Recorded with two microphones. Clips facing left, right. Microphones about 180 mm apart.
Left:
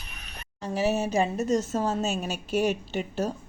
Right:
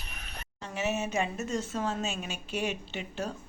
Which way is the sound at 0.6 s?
35° left (ahead or behind).